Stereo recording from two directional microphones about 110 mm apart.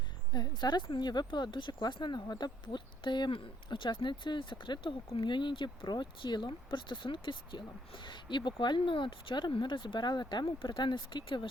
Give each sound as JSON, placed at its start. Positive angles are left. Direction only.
{"t": 0.3, "sound": "speech", "side_deg": 40}